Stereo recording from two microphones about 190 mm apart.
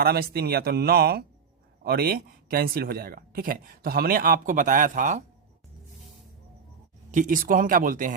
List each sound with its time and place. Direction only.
0.0 s a man's voice: 55° right (ahead or behind)
7.1 s speech: 45° right (ahead or behind)